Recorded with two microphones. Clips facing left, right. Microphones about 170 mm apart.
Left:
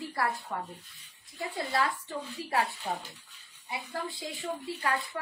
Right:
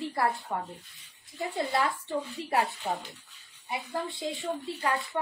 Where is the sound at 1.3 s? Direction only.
25° right (ahead or behind).